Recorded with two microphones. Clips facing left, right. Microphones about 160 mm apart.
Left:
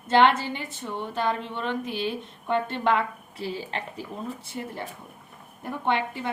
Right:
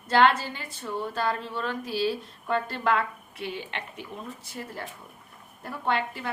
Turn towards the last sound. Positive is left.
turn(degrees=20)  # may be behind; listen again after turning